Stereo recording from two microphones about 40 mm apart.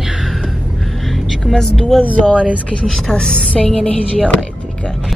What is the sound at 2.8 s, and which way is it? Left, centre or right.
Speech, centre.